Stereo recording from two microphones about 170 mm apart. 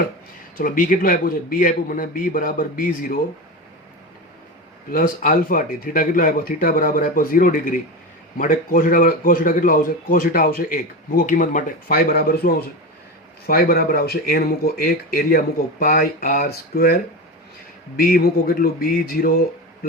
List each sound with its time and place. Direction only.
0.5 s a man's voice: 55° left (ahead or behind)
4.9 s a man's voice: 55° left (ahead or behind)